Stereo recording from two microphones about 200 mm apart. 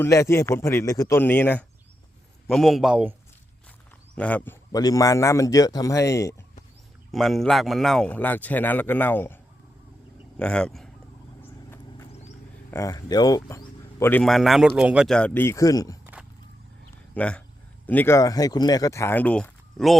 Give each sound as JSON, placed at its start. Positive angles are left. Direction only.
{"t": 0.0, "sound": "a man's voice", "side_deg": 15}
{"t": 4.1, "sound": "speech", "side_deg": 5}
{"t": 4.7, "sound": "speech", "side_deg": 20}
{"t": 7.1, "sound": "speech", "side_deg": 0}
{"t": 12.7, "sound": "speech", "side_deg": 15}
{"t": 17.2, "sound": "speech", "side_deg": 5}